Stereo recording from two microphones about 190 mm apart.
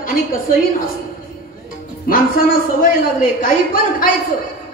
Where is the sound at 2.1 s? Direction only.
50° left (ahead or behind).